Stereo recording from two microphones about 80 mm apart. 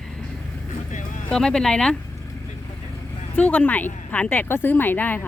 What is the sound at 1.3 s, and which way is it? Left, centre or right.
Speech, centre.